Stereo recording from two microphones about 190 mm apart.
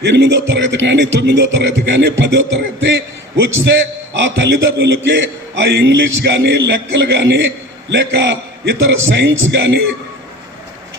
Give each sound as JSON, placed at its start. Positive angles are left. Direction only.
{"t": 0.0, "sound": "speech", "side_deg": -65}